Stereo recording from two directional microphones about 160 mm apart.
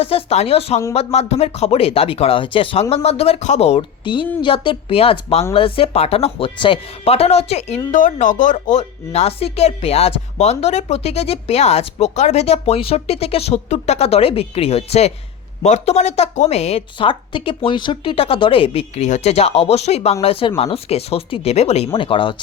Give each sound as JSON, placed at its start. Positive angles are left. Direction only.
{"t": 0.0, "sound": "speech", "side_deg": 35}
{"t": 7.9, "sound": "speech", "side_deg": 50}